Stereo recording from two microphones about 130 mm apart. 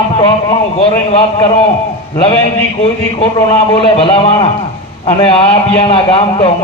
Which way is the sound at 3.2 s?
45° left (ahead or behind).